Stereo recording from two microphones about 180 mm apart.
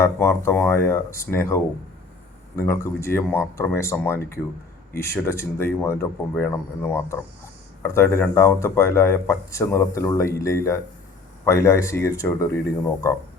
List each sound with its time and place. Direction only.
0.0 s speech: 15° left (ahead or behind)